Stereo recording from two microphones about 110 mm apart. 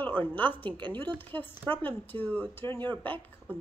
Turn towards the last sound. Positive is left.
turn(degrees=15)  # may be behind; listen again after turning